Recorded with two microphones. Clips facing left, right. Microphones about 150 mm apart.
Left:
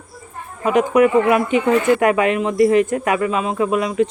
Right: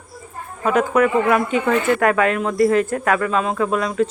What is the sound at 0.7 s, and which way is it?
Speech, 20° left (ahead or behind).